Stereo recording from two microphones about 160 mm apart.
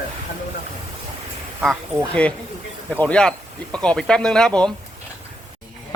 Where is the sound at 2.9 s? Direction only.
10° left (ahead or behind).